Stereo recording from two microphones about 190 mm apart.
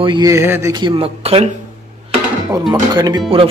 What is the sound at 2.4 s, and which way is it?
Speech, 20° right (ahead or behind).